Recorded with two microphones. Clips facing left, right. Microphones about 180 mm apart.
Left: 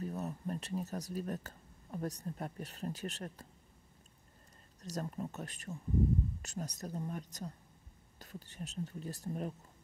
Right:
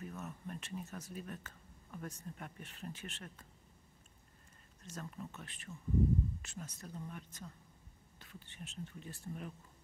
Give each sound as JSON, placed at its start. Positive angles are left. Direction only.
{"t": 0.0, "sound": "speech", "side_deg": 35}
{"t": 4.8, "sound": "speech", "side_deg": 40}